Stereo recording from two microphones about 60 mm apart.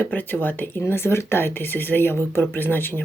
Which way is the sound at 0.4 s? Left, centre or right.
Left.